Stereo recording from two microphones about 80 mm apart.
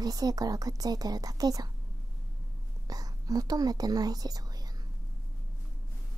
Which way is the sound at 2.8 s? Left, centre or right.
Right.